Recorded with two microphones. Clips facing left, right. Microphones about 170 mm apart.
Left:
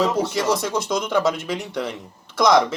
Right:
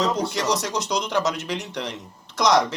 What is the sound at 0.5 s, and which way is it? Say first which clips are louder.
Speech: left 2 dB; 55° left (ahead or behind).